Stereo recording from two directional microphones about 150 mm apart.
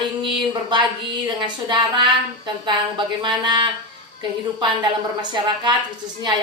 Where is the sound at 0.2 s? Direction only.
30° right (ahead or behind).